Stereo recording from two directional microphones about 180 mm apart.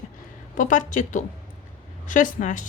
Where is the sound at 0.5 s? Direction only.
45° left (ahead or behind).